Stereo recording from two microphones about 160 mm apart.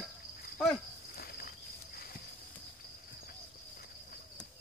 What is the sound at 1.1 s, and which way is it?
Walk, 70° left (ahead or behind).